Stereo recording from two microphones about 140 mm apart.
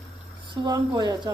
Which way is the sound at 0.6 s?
30° right (ahead or behind).